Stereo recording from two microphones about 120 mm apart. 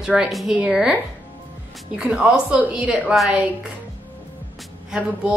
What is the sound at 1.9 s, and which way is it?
A woman's voice, 10° right (ahead or behind).